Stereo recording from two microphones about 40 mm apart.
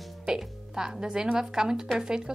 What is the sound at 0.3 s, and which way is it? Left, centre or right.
Speech, centre.